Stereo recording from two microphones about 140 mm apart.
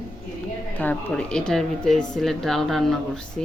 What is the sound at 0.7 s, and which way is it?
Speech, 10° left (ahead or behind).